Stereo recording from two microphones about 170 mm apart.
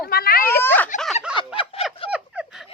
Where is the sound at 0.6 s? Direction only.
10° left (ahead or behind).